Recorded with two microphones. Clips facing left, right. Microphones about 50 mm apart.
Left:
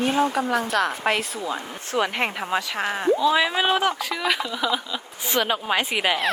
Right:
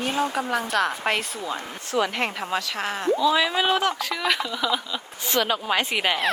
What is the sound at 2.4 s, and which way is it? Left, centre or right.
Speech, centre.